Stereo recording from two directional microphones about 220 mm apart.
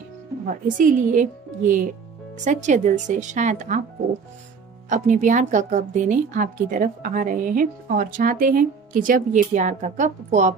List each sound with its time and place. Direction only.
0.5 s a woman's voice: 35° right (ahead or behind)
4.8 s a woman's voice: 35° right (ahead or behind)